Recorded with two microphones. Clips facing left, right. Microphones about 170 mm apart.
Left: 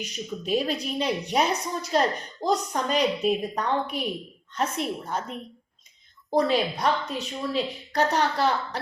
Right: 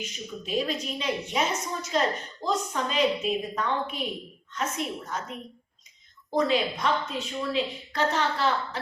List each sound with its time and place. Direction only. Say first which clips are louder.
0.0 s a woman's voice: left 4 dB; 35° left (ahead or behind)
6.3 s a woman's voice: left 2 dB; 35° left (ahead or behind)